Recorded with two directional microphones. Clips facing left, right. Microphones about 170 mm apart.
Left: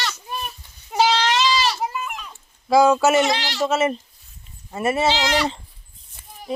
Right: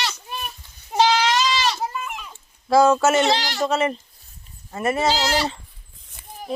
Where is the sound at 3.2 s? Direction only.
30° right (ahead or behind).